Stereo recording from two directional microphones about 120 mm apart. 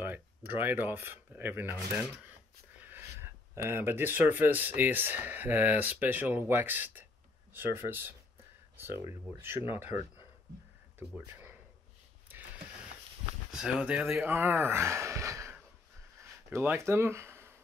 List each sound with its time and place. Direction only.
0.0 s speech: 15° right (ahead or behind)
13.5 s speech: 5° right (ahead or behind)
14.2 s speech: 15° right (ahead or behind)
16.2 s a sound: 20° right (ahead or behind)